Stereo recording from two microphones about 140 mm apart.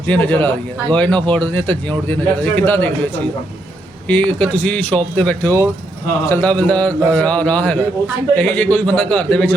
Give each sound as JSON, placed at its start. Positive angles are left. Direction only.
{"t": 0.1, "sound": "a man's voice", "side_deg": 10}
{"t": 4.1, "sound": "a man's voice", "side_deg": 10}